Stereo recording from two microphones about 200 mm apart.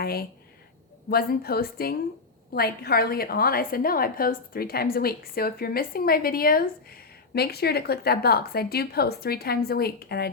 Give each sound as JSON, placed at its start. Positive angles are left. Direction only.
{"t": 0.0, "sound": "a woman's voice", "side_deg": 50}